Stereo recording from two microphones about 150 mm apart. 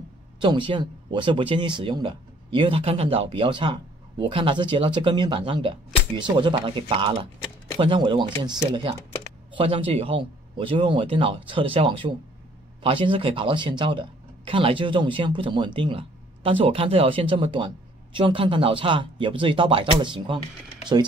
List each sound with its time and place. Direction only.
0.4 s speech: 30° right (ahead or behind)